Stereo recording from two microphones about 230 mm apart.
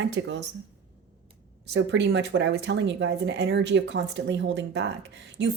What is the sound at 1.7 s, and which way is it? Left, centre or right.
Speech, right.